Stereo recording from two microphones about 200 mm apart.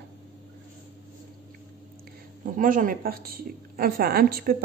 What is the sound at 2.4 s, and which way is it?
A woman's voice, 45° right (ahead or behind).